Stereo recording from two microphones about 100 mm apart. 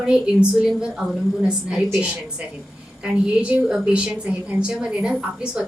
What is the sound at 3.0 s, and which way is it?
A woman's voice, 10° right (ahead or behind).